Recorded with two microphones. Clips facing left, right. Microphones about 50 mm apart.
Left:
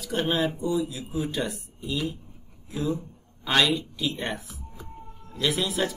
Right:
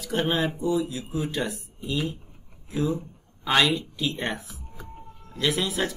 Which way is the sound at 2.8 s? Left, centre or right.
Centre.